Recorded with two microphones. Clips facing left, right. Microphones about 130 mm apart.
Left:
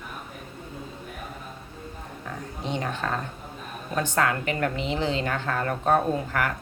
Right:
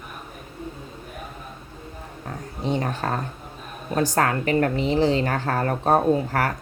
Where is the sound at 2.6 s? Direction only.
35° right (ahead or behind).